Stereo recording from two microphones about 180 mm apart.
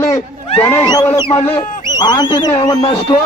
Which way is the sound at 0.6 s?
15° left (ahead or behind).